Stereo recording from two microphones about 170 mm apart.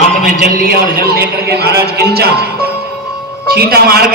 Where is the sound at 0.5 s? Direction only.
60° right (ahead or behind).